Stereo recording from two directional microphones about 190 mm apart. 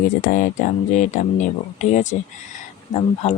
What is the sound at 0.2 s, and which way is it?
Speech, 45° left (ahead or behind).